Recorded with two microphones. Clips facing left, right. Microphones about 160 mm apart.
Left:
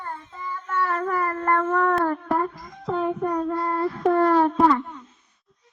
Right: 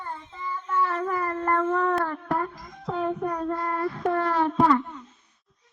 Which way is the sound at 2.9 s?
Centre (ahead or behind).